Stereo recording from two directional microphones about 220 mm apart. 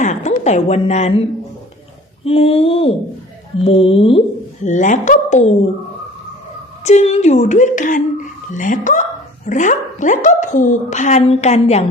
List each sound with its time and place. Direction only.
0.0 s a woman's voice: 35° left (ahead or behind)
2.2 s a woman's voice: 25° left (ahead or behind)
6.8 s a woman's voice: 30° left (ahead or behind)